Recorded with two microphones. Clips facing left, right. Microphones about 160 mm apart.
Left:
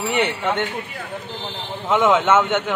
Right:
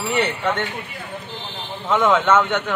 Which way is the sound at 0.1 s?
20° left (ahead or behind).